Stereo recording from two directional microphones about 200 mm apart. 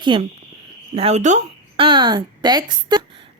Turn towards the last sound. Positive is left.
turn(degrees=-20)  # may be behind; listen again after turning